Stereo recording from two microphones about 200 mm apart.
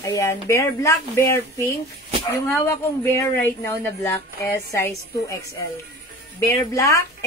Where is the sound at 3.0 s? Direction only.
10° left (ahead or behind).